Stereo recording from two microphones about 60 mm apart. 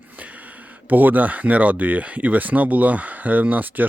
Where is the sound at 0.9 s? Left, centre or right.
Right.